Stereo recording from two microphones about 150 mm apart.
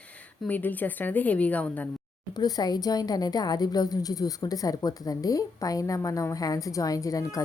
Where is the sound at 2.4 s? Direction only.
25° left (ahead or behind).